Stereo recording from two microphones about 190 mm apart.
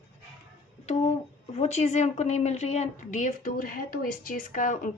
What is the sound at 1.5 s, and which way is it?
A woman's voice, 35° left (ahead or behind).